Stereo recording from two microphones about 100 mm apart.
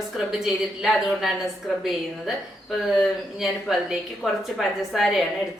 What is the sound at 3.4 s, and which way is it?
A woman's voice, centre (ahead or behind).